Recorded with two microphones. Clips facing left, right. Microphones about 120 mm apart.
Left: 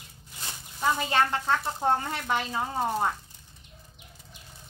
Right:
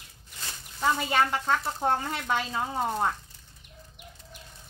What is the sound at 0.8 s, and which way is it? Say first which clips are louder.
Speech: even; centre (ahead or behind).